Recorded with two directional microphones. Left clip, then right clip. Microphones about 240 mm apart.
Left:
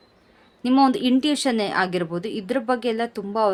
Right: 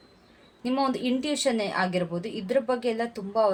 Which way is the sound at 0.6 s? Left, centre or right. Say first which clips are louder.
Left 8 dB; left.